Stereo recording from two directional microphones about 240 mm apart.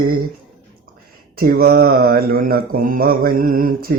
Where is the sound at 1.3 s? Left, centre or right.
Right.